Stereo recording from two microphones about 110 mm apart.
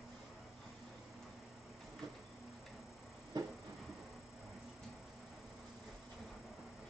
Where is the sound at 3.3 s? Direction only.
40° right (ahead or behind).